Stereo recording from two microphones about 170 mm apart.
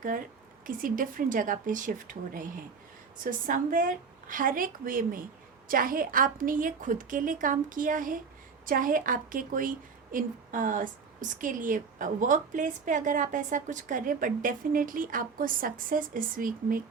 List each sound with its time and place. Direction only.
0.7 s a woman's voice: 55° right (ahead or behind)